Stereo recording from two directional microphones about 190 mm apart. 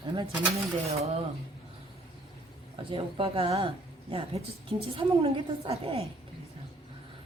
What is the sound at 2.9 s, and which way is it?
A woman's voice, 30° right (ahead or behind).